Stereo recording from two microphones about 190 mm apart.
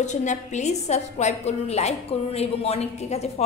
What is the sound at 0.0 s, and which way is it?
A woman's voice, 40° left (ahead or behind).